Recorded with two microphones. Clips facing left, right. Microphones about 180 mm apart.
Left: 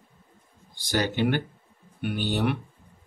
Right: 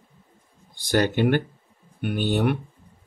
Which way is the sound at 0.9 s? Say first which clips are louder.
Right 4 dB; 50° right (ahead or behind).